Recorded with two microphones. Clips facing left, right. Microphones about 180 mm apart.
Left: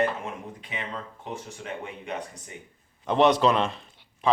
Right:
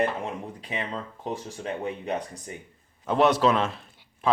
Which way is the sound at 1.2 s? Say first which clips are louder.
Right 6 dB; 35° right (ahead or behind).